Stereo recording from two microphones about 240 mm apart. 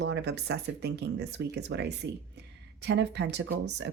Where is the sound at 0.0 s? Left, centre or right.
Right.